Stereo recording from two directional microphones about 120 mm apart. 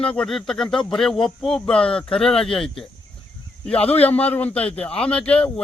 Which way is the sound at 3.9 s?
15° left (ahead or behind).